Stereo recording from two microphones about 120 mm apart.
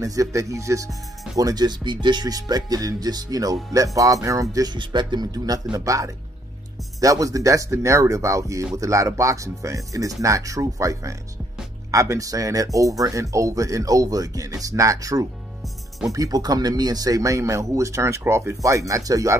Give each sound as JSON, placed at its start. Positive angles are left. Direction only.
{"t": 0.0, "sound": "speech", "side_deg": -30}